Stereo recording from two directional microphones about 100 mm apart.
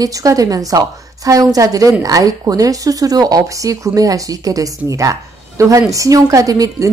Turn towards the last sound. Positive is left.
turn(degrees=-35)  # may be behind; listen again after turning